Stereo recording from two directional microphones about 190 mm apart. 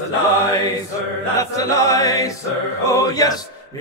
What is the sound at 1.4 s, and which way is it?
Chant, 15° left (ahead or behind).